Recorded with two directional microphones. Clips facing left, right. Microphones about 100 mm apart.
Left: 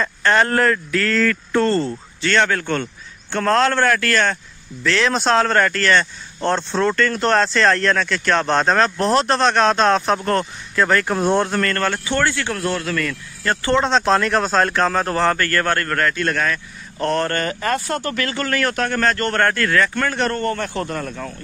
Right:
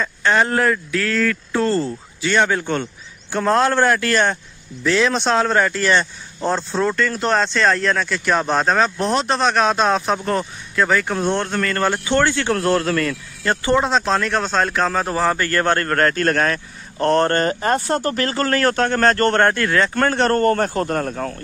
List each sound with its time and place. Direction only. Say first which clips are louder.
0.0 s speech: left 1 dB; 5° right (ahead or behind); by 4.4 s 20° right (ahead or behind)
5.0 s speech: left 3 dB; centre (ahead or behind)
11.6 s a man's voice: right 1 dB; 15° right (ahead or behind); by 13.1 s 35° right (ahead or behind)
13.4 s speech: right 1 dB; 20° right (ahead or behind)
13.8 s speech: left 2 dB; centre (ahead or behind)
15.3 s a man's voice: right 1 dB; 20° right (ahead or behind)
19.4 s speech: right 1 dB; 20° right (ahead or behind)
19.9 s a man's voice: right 4 dB; 35° right (ahead or behind)